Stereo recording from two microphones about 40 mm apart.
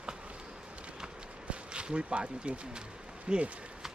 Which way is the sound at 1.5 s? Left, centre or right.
Right.